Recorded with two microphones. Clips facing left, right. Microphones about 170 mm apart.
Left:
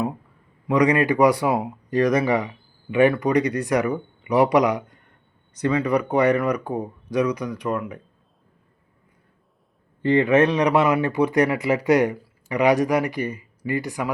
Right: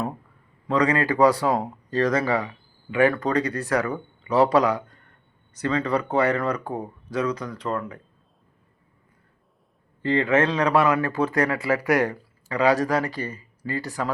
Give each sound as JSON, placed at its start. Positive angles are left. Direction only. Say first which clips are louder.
{"t": 0.7, "sound": "speech", "louder": "left 3 dB", "side_deg": 15}
{"t": 10.0, "sound": "speech", "louder": "left 4 dB", "side_deg": 15}